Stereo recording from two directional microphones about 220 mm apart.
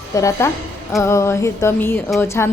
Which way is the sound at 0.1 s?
15° left (ahead or behind).